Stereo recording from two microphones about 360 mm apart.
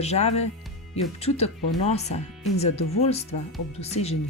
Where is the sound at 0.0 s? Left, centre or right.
Centre.